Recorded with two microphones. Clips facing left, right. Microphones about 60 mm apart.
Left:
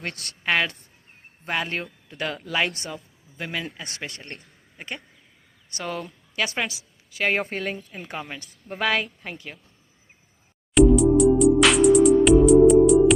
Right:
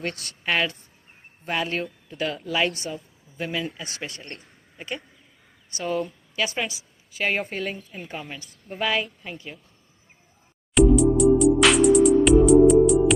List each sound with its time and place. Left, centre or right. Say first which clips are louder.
0.0 s speech: even; left
5.7 s a woman's voice: right 4 dB; left
7.8 s a woman's voice: even; centre
8.0 s a woman's voice: left 1 dB; left
10.8 s music: left 1 dB; centre